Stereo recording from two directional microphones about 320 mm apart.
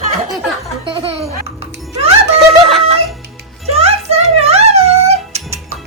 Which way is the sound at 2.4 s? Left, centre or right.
Centre.